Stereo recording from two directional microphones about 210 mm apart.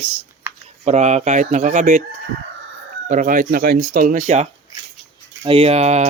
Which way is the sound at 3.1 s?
40° right (ahead or behind).